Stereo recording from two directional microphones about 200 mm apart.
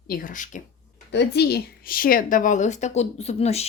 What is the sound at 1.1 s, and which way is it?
A woman's voice, 55° left (ahead or behind).